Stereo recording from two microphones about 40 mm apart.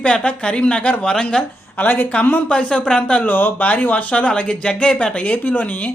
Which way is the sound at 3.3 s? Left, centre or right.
Left.